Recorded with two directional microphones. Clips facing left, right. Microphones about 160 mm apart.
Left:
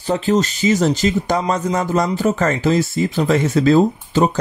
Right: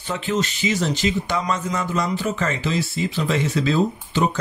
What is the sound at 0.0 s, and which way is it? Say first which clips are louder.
A man's voice: left 7 dB; 35° left (ahead or behind).